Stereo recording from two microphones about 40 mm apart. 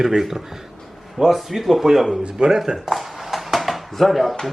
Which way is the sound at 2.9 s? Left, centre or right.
Centre.